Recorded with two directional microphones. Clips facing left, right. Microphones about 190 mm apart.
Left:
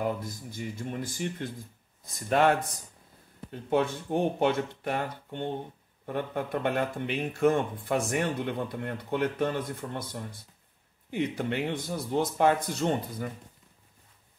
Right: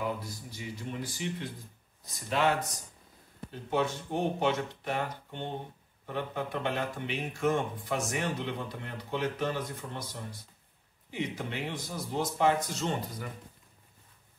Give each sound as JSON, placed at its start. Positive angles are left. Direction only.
{"t": 0.0, "sound": "speech", "side_deg": 50}
{"t": 3.7, "sound": "speech", "side_deg": 55}